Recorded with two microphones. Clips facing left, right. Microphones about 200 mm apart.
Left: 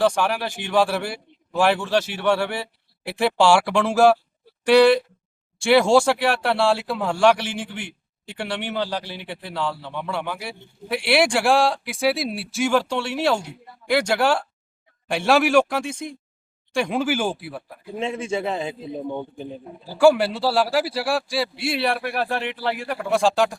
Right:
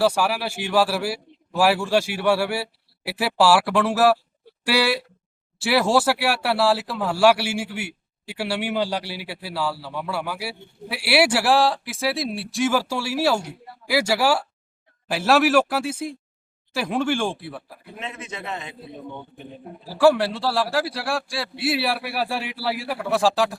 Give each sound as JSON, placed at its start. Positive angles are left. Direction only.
{"t": 0.0, "sound": "a man's voice", "side_deg": -5}
{"t": 17.9, "sound": "a man's voice", "side_deg": 30}
{"t": 19.8, "sound": "a man's voice", "side_deg": 0}